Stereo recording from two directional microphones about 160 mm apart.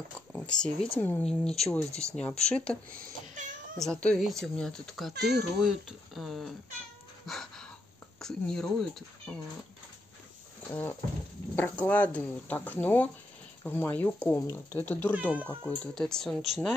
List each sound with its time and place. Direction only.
0.3 s a sound: 5° left (ahead or behind)
0.9 s speech: 10° left (ahead or behind)
2.9 s cat: 60° right (ahead or behind)
3.8 s speech: 5° left (ahead or behind)
7.2 s a sound: 5° left (ahead or behind)
8.2 s speech: 5° left (ahead or behind)
10.7 s speech: 10° left (ahead or behind)